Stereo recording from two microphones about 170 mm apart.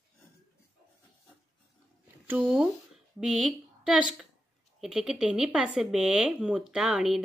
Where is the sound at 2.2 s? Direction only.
10° right (ahead or behind).